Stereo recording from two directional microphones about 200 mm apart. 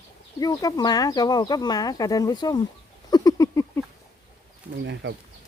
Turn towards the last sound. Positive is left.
turn(degrees=-60)  # may be behind; listen again after turning